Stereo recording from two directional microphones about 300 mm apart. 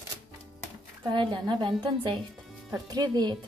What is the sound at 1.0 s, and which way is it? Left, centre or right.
A woman's voice, centre.